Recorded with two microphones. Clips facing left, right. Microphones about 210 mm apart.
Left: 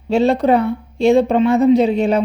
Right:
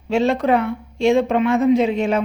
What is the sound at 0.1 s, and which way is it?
A woman's voice, 35° left (ahead or behind).